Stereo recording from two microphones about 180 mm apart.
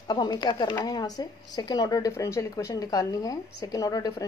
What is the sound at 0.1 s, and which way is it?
A woman's voice, 25° left (ahead or behind).